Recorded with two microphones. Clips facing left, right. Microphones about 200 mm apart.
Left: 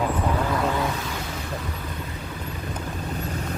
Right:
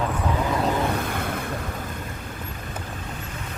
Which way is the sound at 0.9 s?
55° right (ahead or behind).